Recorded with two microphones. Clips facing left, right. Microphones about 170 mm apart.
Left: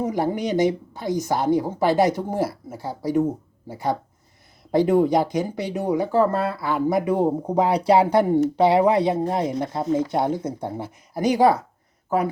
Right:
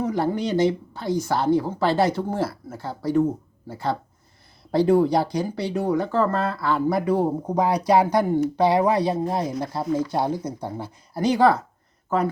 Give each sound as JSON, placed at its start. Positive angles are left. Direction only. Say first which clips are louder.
{"t": 0.0, "sound": "a woman's voice", "louder": "even", "side_deg": 15}